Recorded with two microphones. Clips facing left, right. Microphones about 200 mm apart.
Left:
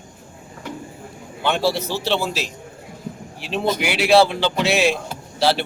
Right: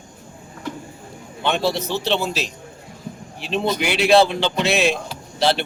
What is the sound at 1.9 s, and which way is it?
Speech, 20° right (ahead or behind).